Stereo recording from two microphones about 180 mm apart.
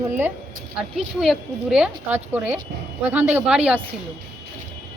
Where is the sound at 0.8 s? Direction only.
5° right (ahead or behind).